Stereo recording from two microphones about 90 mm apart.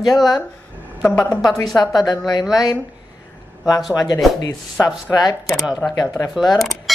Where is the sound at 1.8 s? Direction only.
50° left (ahead or behind).